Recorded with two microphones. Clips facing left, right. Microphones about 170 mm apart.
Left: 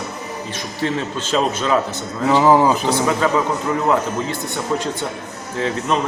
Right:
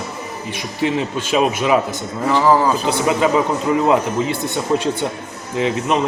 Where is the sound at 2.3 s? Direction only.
20° left (ahead or behind).